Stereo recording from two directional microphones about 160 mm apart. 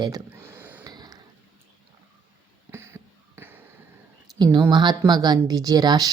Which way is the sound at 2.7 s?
15° right (ahead or behind).